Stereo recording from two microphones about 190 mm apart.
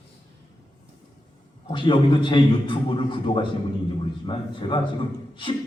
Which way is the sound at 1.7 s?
25° left (ahead or behind).